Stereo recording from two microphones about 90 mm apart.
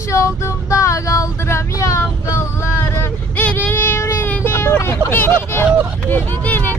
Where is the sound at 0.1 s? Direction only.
35° left (ahead or behind).